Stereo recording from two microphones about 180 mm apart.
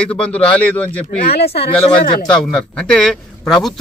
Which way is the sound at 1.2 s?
60° left (ahead or behind).